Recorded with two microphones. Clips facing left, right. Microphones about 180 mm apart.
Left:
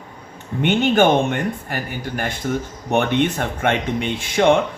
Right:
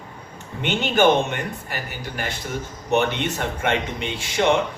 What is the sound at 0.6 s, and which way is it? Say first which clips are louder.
A man's voice: left 3 dB; 55° left (ahead or behind).